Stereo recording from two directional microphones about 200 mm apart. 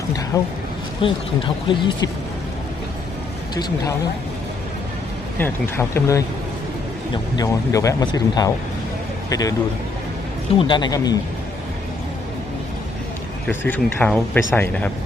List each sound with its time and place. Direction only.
1.0 s speech: 25° left (ahead or behind)
3.5 s speech: 20° left (ahead or behind)
5.4 s speech: 15° left (ahead or behind)
7.3 s speech: 15° left (ahead or behind)
10.6 s speech: 20° left (ahead or behind)
13.5 s speech: 10° left (ahead or behind)